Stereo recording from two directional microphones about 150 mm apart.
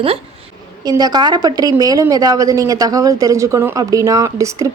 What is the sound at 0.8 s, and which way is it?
A woman's voice, 25° right (ahead or behind).